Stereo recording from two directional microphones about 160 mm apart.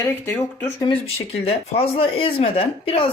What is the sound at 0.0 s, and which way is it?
Speech, 15° left (ahead or behind).